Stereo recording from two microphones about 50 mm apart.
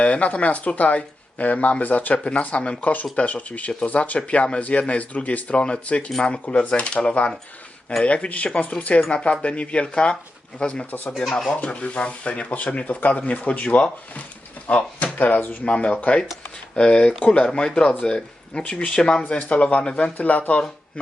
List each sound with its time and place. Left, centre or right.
0.0 s speech: left
2.9 s speech: left
11.2 s speech: centre
11.6 s speech: left
15.2 s speech: left
15.6 s speech: left